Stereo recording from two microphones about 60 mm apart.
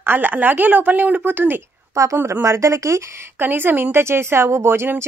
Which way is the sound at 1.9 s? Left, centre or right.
Right.